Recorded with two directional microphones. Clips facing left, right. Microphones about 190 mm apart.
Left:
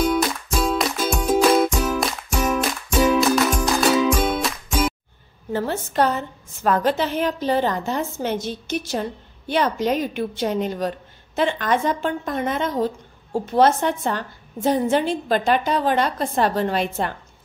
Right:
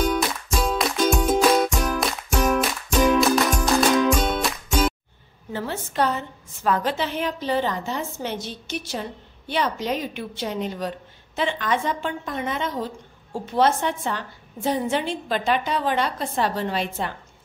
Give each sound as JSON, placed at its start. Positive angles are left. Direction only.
{"t": 0.0, "sound": "music", "side_deg": 0}
{"t": 5.5, "sound": "speech", "side_deg": 45}